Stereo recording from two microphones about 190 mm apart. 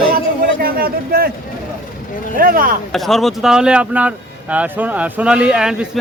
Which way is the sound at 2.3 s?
50° right (ahead or behind).